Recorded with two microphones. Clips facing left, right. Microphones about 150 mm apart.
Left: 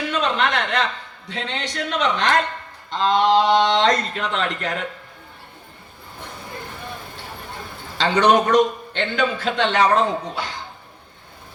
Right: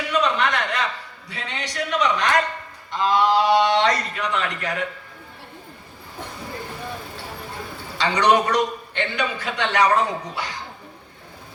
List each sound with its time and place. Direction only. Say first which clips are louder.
0.1 s a sound: right 1 dB; 25° left (ahead or behind)
1.3 s a man's voice: left 4 dB; 25° left (ahead or behind)
7.9 s a man's voice: left 2 dB; 25° left (ahead or behind)